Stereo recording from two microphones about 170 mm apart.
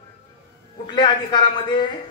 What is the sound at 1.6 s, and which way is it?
Speech, 30° left (ahead or behind).